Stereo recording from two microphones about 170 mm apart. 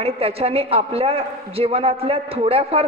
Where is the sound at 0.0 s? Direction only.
35° right (ahead or behind).